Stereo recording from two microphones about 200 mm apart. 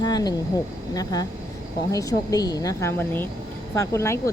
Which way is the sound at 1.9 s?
15° left (ahead or behind).